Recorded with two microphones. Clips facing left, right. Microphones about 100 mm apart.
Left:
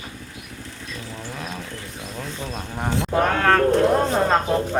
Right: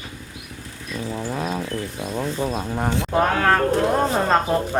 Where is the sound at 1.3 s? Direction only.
35° right (ahead or behind).